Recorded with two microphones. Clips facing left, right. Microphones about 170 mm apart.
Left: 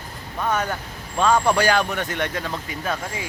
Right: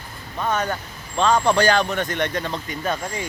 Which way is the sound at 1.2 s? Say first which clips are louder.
Right 1 dB; 5° left (ahead or behind).